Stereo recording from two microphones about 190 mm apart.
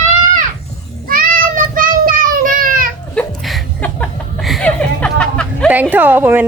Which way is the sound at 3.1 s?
5° left (ahead or behind).